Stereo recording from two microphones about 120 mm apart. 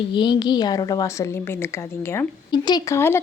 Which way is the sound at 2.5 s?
35° left (ahead or behind).